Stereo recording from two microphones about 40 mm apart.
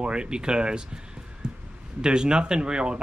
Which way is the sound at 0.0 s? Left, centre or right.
Right.